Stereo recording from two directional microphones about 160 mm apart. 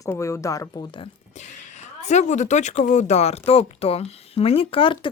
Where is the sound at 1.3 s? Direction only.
45° left (ahead or behind).